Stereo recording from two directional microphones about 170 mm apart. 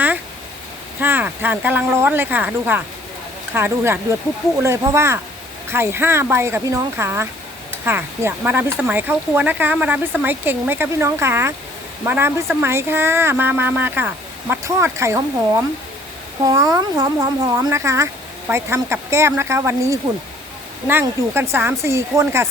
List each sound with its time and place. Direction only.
0.9 s speech: 10° right (ahead or behind)
16.4 s speech: 20° right (ahead or behind)